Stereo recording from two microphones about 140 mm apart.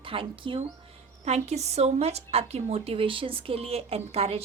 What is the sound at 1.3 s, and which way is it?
A woman's voice, 50° right (ahead or behind).